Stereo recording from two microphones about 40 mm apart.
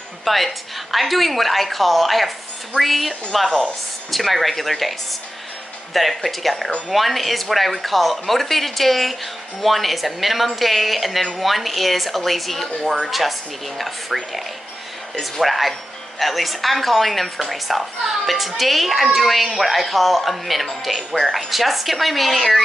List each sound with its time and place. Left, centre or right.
0.2 s a woman's voice: centre
5.9 s speech: centre
12.8 s speech: centre
13.7 s speech: centre